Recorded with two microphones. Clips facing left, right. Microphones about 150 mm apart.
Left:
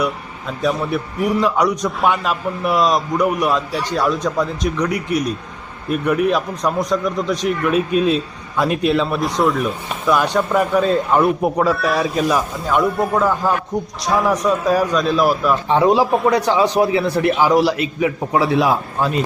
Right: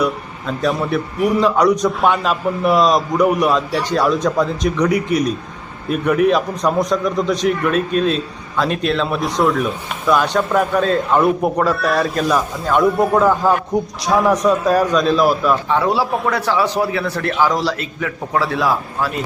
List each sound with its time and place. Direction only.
0.0 s a man's voice: 5° left (ahead or behind)
15.7 s a man's voice: 15° left (ahead or behind)